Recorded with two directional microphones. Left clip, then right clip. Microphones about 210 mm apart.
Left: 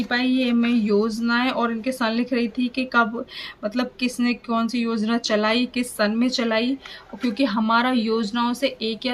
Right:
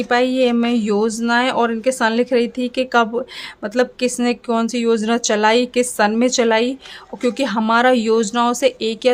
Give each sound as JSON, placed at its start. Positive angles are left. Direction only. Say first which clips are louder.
{"t": 0.1, "sound": "speech", "louder": "right 7 dB", "side_deg": -60}